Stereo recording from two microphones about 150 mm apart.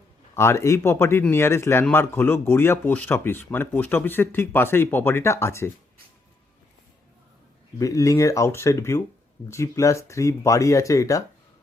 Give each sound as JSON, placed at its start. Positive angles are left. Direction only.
{"t": 0.3, "sound": "speech", "side_deg": 20}
{"t": 7.8, "sound": "speech", "side_deg": 20}